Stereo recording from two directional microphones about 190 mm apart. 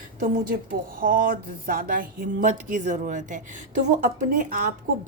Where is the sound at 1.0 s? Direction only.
45° right (ahead or behind).